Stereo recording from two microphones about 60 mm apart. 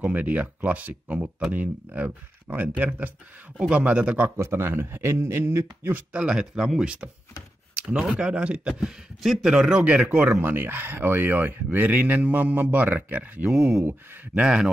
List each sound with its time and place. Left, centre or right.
0.0 s speech: right
4.4 s speech: right
5.9 s speech: centre
8.1 s speech: centre
9.2 s speech: centre
9.5 s speech: centre
10.0 s speech: right
13.5 s speech: centre
14.3 s speech: centre